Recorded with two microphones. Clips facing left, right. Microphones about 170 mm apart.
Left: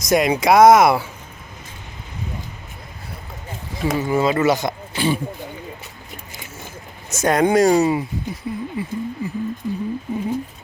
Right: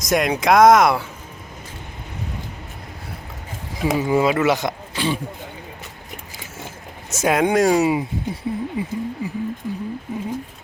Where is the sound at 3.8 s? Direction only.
15° right (ahead or behind).